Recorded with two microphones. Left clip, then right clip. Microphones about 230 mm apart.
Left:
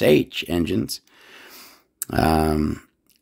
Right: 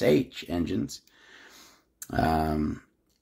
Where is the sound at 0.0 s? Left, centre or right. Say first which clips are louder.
Left 6 dB; left.